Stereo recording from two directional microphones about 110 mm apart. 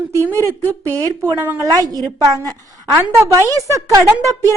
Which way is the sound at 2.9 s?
20° right (ahead or behind).